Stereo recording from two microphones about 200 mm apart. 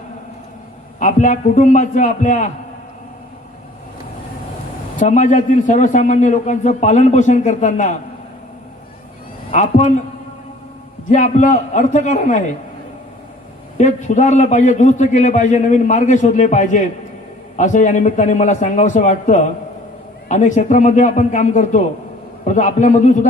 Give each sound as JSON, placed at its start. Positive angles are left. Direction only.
{"t": 0.9, "sound": "a man's voice", "side_deg": 40}
{"t": 4.9, "sound": "a man's voice", "side_deg": 40}
{"t": 9.5, "sound": "a man's voice", "side_deg": 35}
{"t": 11.1, "sound": "a man's voice", "side_deg": 35}
{"t": 13.7, "sound": "a man's voice", "side_deg": 35}